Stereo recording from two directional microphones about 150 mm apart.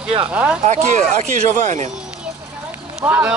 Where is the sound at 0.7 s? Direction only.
50° right (ahead or behind).